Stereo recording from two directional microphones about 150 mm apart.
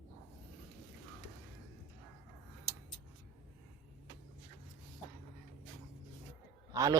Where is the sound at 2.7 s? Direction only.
35° left (ahead or behind).